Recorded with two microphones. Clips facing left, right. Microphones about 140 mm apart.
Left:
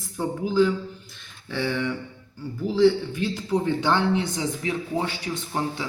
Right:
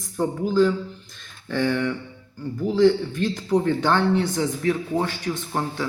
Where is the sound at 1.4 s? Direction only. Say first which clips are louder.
Right 4 dB; 50° right (ahead or behind).